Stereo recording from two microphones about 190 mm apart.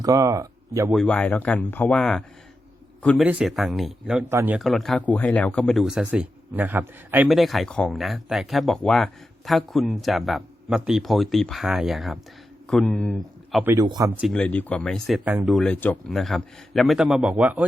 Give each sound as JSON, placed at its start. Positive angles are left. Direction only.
{"t": 0.0, "sound": "speech", "side_deg": -20}
{"t": 0.9, "sound": "a man's voice", "side_deg": 5}
{"t": 13.7, "sound": "speech", "side_deg": -20}
{"t": 14.2, "sound": "speech", "side_deg": 0}
{"t": 15.2, "sound": "speech", "side_deg": -10}